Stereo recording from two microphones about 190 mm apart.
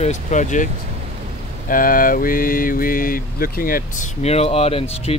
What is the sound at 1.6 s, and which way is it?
Mantra, 45° left (ahead or behind).